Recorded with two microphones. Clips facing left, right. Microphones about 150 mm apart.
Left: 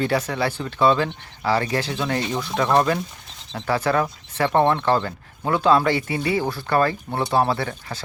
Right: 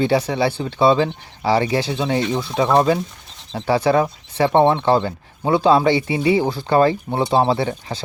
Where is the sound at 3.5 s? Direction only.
25° right (ahead or behind).